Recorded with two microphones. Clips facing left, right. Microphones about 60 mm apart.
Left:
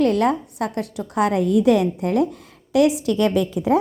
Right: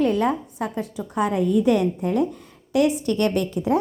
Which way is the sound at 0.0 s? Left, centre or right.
Left.